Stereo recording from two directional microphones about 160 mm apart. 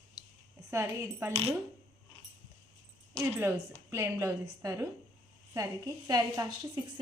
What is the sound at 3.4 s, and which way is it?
A woman's voice, 15° right (ahead or behind).